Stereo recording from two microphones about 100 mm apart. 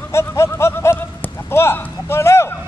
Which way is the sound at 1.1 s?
20° left (ahead or behind).